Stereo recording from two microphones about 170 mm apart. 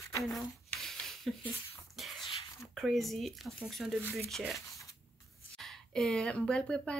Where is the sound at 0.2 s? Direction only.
Centre (ahead or behind).